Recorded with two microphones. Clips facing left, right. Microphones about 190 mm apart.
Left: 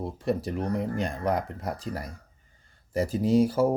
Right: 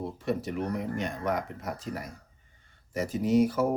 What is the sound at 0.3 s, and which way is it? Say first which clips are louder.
Speech: left 3 dB; 35° left (ahead or behind).